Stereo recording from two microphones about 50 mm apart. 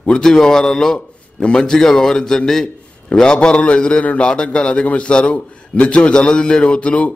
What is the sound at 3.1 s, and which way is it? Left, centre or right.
A man's voice, centre.